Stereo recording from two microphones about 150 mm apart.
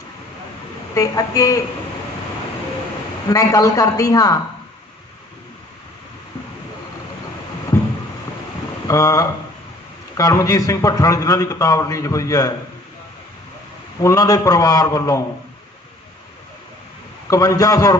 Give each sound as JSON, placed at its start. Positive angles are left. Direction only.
{"t": 0.9, "sound": "a man's voice", "side_deg": 20}
{"t": 3.2, "sound": "a man's voice", "side_deg": 20}
{"t": 8.9, "sound": "a man's voice", "side_deg": 25}
{"t": 14.0, "sound": "a man's voice", "side_deg": 20}
{"t": 17.2, "sound": "a man's voice", "side_deg": 20}